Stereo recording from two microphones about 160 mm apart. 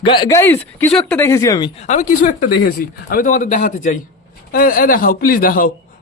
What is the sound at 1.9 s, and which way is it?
A man's voice, 55° left (ahead or behind).